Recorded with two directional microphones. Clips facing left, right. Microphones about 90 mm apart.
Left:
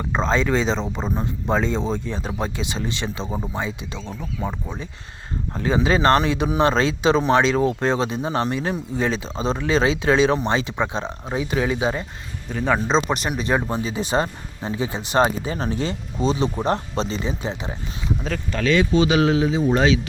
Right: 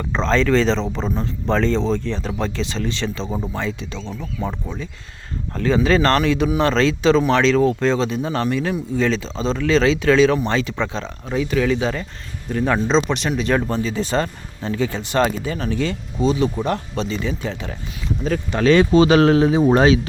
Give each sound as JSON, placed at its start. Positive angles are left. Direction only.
{"t": 0.1, "sound": "speech", "side_deg": 10}
{"t": 3.2, "sound": "speech", "side_deg": 5}
{"t": 3.5, "sound": "speech", "side_deg": 15}
{"t": 5.5, "sound": "speech", "side_deg": 20}
{"t": 7.2, "sound": "speech", "side_deg": 30}
{"t": 12.5, "sound": "speech", "side_deg": 0}
{"t": 18.6, "sound": "speech", "side_deg": -45}
{"t": 19.6, "sound": "speech", "side_deg": -45}